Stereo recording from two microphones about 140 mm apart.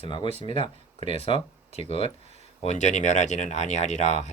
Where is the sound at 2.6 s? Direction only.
55° left (ahead or behind).